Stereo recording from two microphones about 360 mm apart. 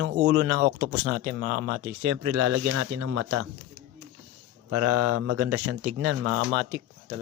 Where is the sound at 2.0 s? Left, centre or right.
Right.